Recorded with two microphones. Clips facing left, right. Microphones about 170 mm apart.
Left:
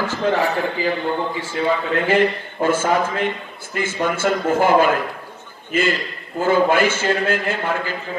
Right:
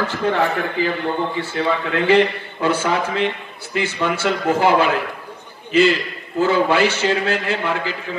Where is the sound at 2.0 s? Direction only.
50° left (ahead or behind).